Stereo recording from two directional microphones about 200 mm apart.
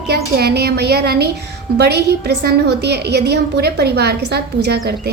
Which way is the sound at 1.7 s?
55° right (ahead or behind).